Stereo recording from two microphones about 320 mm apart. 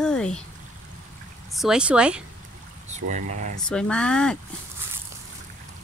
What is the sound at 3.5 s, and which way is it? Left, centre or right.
Speech, centre.